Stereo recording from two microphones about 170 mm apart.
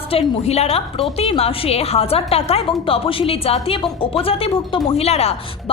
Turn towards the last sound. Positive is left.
turn(degrees=40)  # may be behind; listen again after turning